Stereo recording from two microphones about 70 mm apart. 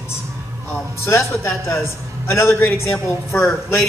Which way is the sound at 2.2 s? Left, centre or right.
Left.